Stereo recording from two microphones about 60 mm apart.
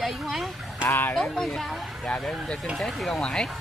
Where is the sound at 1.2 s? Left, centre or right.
Centre.